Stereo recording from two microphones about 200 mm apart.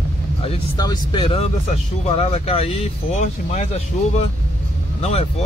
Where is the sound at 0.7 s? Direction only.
20° left (ahead or behind); by 3.7 s 35° left (ahead or behind).